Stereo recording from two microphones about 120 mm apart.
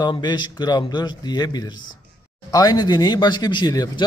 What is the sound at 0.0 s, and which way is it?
Speech, 35° left (ahead or behind).